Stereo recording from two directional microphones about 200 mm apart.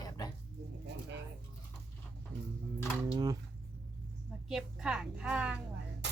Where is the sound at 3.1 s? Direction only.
20° right (ahead or behind).